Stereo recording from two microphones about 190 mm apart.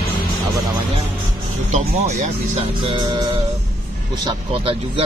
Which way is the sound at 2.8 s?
25° right (ahead or behind).